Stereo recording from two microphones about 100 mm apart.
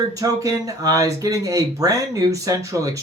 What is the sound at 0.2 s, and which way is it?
Speech, 35° right (ahead or behind).